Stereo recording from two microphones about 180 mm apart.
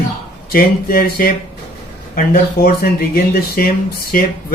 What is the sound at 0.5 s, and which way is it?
Speech, 55° left (ahead or behind).